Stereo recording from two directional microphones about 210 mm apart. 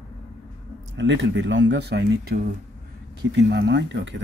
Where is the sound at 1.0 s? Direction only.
55° right (ahead or behind).